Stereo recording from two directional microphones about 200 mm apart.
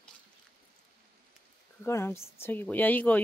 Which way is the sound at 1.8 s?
10° left (ahead or behind).